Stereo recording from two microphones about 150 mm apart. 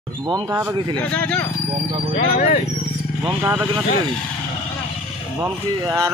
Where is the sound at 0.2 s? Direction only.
25° right (ahead or behind).